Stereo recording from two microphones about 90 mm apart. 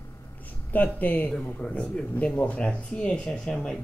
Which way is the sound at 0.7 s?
20° left (ahead or behind).